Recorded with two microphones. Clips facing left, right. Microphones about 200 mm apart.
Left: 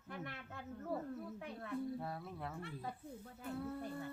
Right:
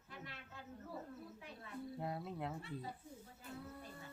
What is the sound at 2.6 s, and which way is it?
Speech, 55° left (ahead or behind).